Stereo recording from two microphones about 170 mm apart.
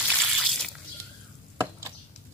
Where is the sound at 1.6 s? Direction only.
20° right (ahead or behind).